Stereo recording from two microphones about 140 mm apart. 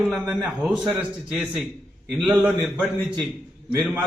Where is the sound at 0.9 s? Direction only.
5° right (ahead or behind).